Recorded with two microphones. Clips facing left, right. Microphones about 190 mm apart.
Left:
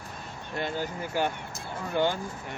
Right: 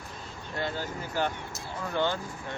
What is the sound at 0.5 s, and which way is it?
Speech, 15° left (ahead or behind).